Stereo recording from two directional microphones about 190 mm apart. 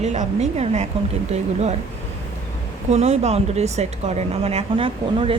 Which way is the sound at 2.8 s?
35° right (ahead or behind).